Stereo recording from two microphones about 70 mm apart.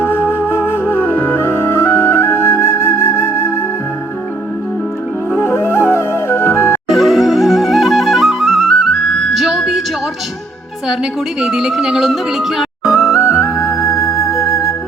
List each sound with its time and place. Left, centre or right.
0.0 s music: left
5.3 s music: left
6.8 s flute: centre
10.8 s speech: centre
12.9 s flute: left